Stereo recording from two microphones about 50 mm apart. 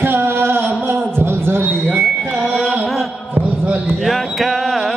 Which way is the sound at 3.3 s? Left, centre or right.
Right.